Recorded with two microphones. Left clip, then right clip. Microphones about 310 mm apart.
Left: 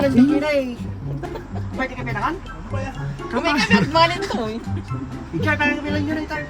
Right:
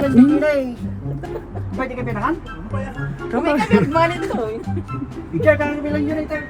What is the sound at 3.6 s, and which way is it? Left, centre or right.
Speech, left.